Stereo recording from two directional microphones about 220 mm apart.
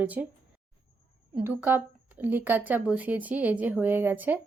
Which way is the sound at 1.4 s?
10° right (ahead or behind).